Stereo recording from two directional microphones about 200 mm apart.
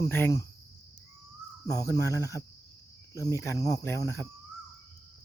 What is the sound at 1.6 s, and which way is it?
Speech, 15° left (ahead or behind).